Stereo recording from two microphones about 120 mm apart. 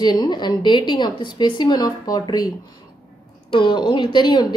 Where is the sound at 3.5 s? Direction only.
40° left (ahead or behind).